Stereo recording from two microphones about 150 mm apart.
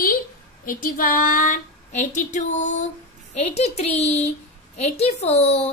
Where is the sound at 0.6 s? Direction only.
70° left (ahead or behind); by 4.2 s 45° left (ahead or behind).